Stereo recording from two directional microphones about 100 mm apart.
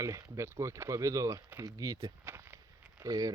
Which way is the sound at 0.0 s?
30° right (ahead or behind).